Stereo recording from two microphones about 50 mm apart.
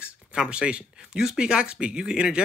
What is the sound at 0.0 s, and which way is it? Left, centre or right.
Speech, right.